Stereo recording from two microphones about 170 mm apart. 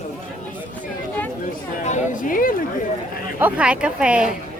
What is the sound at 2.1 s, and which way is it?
Speech, 55° left (ahead or behind).